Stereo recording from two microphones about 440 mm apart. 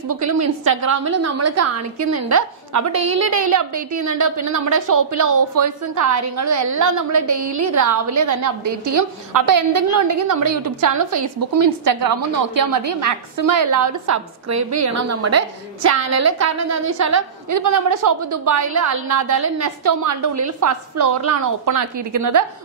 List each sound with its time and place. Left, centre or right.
0.1 s a woman's voice: right
7.2 s a woman's voice: right
7.7 s a woman's voice: right